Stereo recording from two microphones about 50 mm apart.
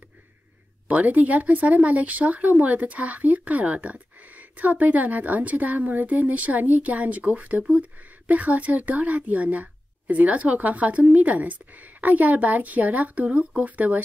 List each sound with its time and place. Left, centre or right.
0.8 s a woman's voice: right